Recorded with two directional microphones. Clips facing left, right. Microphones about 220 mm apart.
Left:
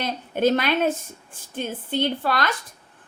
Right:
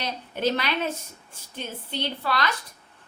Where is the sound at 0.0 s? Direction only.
50° left (ahead or behind).